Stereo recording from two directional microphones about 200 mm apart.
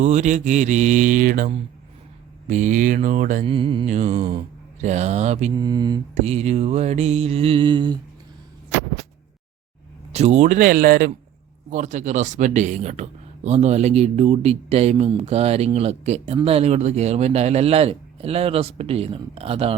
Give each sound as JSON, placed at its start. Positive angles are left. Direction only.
{"t": 0.0, "sound": "speech", "side_deg": -35}
{"t": 3.4, "sound": "mantra", "side_deg": -25}
{"t": 4.2, "sound": "mantra", "side_deg": -25}
{"t": 4.8, "sound": "speech", "side_deg": -35}
{"t": 5.5, "sound": "mantra", "side_deg": -20}
{"t": 6.1, "sound": "speech", "side_deg": -30}
{"t": 10.1, "sound": "speech", "side_deg": -30}
{"t": 11.7, "sound": "speech", "side_deg": -40}